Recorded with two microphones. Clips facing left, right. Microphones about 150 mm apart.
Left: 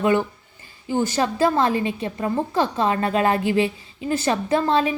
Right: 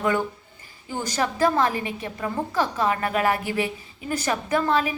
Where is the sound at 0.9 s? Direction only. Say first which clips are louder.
Left 5 dB; 20° left (ahead or behind).